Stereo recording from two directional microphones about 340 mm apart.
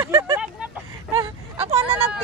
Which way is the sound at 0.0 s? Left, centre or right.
Centre.